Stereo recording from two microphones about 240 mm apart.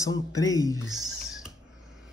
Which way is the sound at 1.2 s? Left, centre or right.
Centre.